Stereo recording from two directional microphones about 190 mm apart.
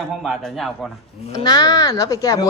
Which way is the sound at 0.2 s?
Centre (ahead or behind).